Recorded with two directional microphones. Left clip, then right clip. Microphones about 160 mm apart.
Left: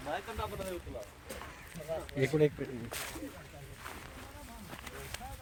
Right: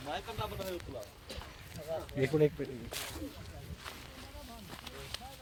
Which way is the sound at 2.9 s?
10° right (ahead or behind).